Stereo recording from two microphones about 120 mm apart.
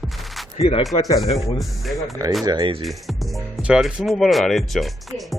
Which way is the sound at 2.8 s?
Centre (ahead or behind).